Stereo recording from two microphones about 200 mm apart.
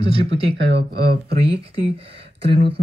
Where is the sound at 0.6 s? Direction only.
55° right (ahead or behind).